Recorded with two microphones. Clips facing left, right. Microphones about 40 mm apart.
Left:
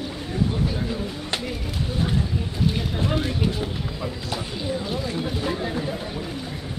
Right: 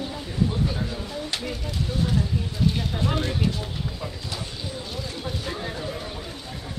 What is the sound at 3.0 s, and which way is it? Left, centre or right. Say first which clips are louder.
Speech: left 1 dB; centre.